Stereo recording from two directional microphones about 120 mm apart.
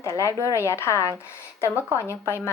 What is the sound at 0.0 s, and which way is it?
Speech, 25° left (ahead or behind).